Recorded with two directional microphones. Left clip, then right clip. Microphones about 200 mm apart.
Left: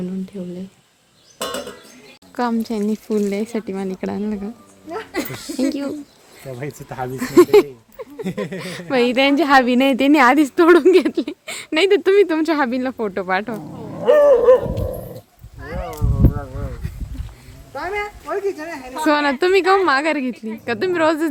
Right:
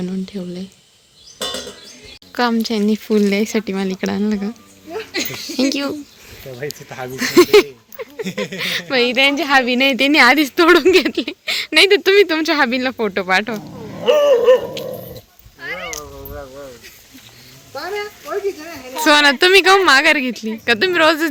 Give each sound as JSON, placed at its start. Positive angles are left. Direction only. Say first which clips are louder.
{"t": 0.0, "sound": "speech", "louder": "right 3 dB", "side_deg": 0}
{"t": 2.3, "sound": "a woman's voice", "louder": "right 4 dB", "side_deg": 0}
{"t": 5.6, "sound": "a woman's voice", "louder": "right 3 dB", "side_deg": 0}
{"t": 6.7, "sound": "speech", "louder": "left 1 dB", "side_deg": 60}
{"t": 7.2, "sound": "speech", "louder": "right 1 dB", "side_deg": 5}
{"t": 8.2, "sound": "speech", "louder": "right 2 dB", "side_deg": 60}
{"t": 8.5, "sound": "a woman's voice", "louder": "right 9 dB", "side_deg": 5}
{"t": 8.9, "sound": "a woman's voice", "louder": "right 1 dB", "side_deg": 20}
{"t": 13.9, "sound": "a sound", "louder": "left 1 dB", "side_deg": -15}
{"t": 15.9, "sound": "a sound", "louder": "left 5 dB", "side_deg": 40}
{"t": 17.7, "sound": "a woman's voice", "louder": "even", "side_deg": 0}